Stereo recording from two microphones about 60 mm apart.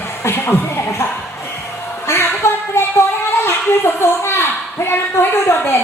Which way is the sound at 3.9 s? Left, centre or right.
Left.